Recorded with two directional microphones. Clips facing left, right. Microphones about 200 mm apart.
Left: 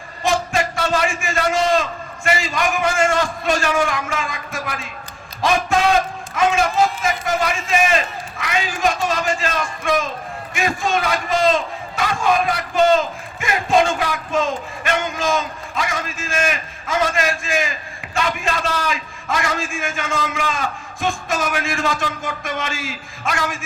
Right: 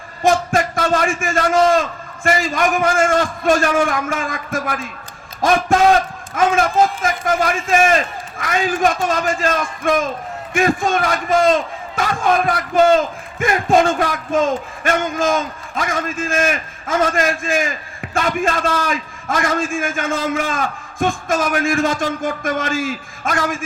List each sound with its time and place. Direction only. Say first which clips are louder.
0.2 s a man's voice: right 4 dB; 50° right (ahead or behind)
6.3 s a man's voice: right 2 dB; 50° right (ahead or behind)